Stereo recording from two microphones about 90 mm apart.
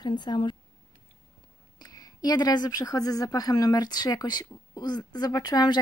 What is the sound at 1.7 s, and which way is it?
A woman's voice, 45° left (ahead or behind).